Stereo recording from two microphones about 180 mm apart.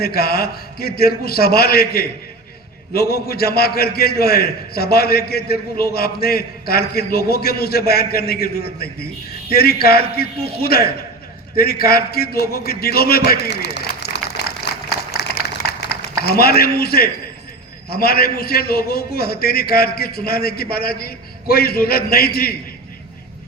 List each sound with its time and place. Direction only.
0.0 s a man's voice: 60° left (ahead or behind)
15.2 s a sound: 65° left (ahead or behind)
16.2 s a man's voice: 60° left (ahead or behind)